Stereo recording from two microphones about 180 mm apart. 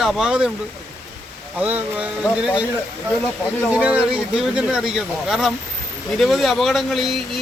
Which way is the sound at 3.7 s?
5° right (ahead or behind).